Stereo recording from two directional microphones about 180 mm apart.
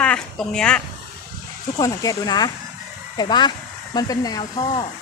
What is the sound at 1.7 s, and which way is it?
Speech, 20° left (ahead or behind).